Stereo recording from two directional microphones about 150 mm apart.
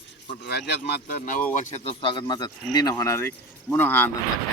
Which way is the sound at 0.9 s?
90° left.